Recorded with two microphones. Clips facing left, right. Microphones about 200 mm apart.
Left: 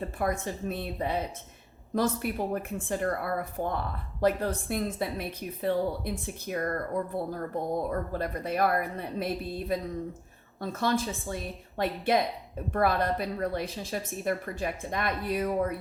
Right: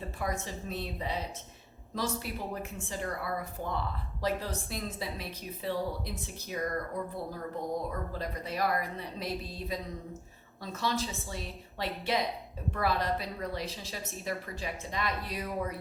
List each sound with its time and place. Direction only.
0.2 s a woman's voice: 55° left (ahead or behind)